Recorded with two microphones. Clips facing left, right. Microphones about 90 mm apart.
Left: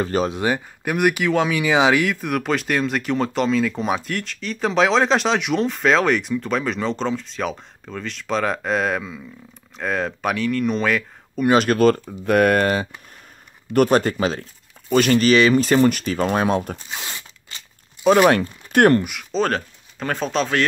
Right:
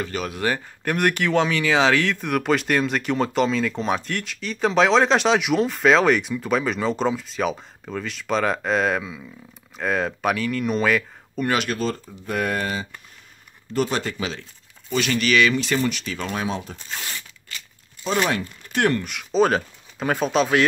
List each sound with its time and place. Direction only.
0.0 s speech: 30° left (ahead or behind)
0.4 s speech: 15° left (ahead or behind)
1.6 s speech: 15° left (ahead or behind)
2.1 s speech: centre (ahead or behind)
11.5 s speech: 40° left (ahead or behind)
11.8 s speech: 65° left (ahead or behind)
13.7 s speech: 45° left (ahead or behind)
16.9 s zipper: 20° left (ahead or behind)
18.0 s speech: 55° left (ahead or behind)
19.3 s speech: 10° right (ahead or behind)